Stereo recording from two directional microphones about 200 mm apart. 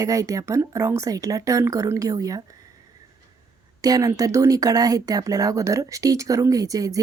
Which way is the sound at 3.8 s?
20° right (ahead or behind).